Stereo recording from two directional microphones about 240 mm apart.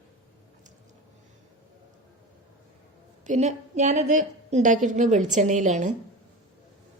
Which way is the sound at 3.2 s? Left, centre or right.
Right.